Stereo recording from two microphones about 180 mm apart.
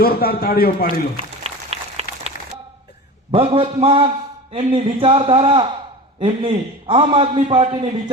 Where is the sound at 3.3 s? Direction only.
35° right (ahead or behind).